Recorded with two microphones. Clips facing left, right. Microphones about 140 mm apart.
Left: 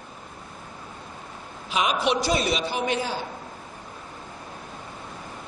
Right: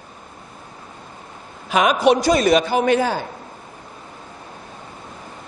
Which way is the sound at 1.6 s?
55° right (ahead or behind).